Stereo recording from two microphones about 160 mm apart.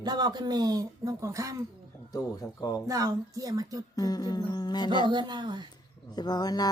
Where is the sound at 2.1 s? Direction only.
20° left (ahead or behind).